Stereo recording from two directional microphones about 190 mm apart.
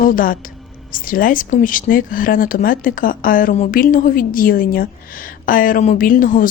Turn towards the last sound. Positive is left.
turn(degrees=45)  # may be behind; listen again after turning